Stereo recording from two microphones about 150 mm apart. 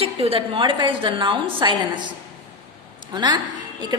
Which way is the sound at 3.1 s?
30° right (ahead or behind).